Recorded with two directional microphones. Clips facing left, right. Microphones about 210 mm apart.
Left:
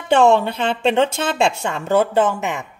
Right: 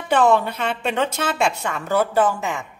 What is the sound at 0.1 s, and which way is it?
A woman's voice, 25° left (ahead or behind).